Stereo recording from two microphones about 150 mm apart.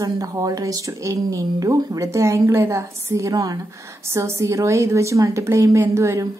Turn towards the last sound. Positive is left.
turn(degrees=-20)  # may be behind; listen again after turning